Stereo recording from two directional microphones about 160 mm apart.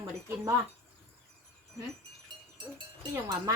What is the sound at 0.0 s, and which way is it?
Speech, 15° right (ahead or behind).